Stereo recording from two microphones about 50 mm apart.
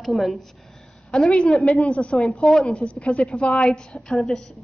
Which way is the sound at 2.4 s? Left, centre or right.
Centre.